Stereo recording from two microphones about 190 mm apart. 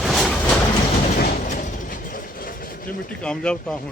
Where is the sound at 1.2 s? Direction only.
40° left (ahead or behind).